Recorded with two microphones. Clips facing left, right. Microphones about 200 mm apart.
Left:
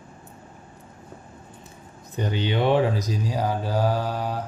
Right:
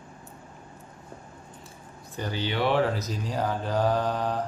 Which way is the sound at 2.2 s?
20° left (ahead or behind).